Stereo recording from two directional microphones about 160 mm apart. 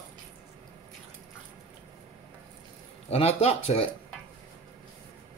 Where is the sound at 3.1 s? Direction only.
40° left (ahead or behind).